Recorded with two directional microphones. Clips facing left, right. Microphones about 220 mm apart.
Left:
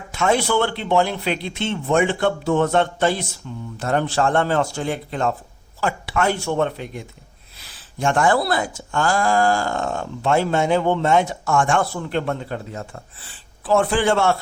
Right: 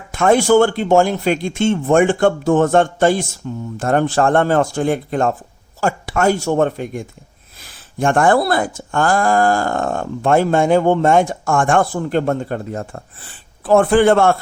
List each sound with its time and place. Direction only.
0.1 s speech: 50° right (ahead or behind)